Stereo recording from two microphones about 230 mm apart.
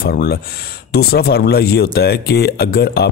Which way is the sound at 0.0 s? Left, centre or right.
Left.